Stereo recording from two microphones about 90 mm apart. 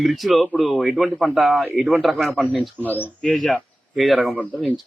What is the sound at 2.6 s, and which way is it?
Speech, 20° left (ahead or behind).